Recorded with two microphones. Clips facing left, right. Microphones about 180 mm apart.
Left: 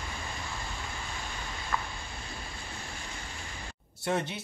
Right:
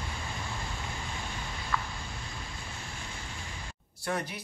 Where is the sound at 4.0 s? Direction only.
25° left (ahead or behind).